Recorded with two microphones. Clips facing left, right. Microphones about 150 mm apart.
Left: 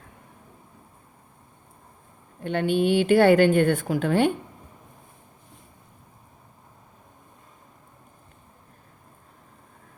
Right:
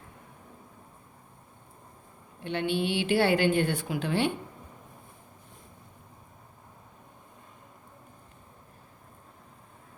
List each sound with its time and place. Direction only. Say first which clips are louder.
2.4 s a woman's voice: left 6 dB; 45° left (ahead or behind)